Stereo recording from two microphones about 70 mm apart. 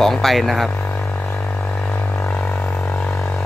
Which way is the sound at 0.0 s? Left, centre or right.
Centre.